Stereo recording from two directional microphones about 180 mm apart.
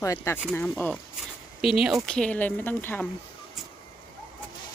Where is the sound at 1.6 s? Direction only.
Centre (ahead or behind).